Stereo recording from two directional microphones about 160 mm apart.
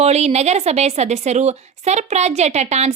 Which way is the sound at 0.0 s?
40° right (ahead or behind).